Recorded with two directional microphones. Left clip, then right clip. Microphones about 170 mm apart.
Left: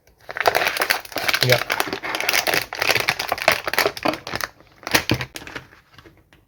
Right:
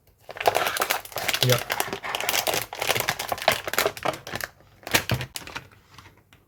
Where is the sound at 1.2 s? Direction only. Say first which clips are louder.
Left 5 dB; 10° right (ahead or behind).